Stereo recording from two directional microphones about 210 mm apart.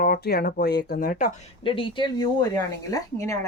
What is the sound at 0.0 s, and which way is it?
Speech, 45° left (ahead or behind).